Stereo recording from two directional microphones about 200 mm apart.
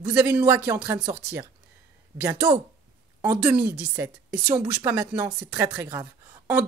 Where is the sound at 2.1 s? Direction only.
15° right (ahead or behind).